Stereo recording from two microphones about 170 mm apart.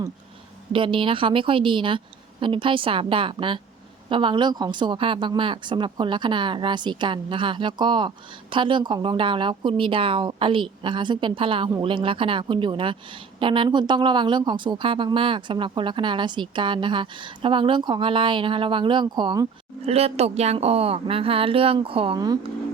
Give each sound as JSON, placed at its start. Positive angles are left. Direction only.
{"t": 0.7, "sound": "a woman's voice", "side_deg": -30}
{"t": 19.8, "sound": "speech", "side_deg": -35}